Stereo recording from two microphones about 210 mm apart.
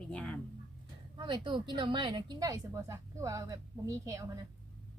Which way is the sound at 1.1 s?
20° right (ahead or behind).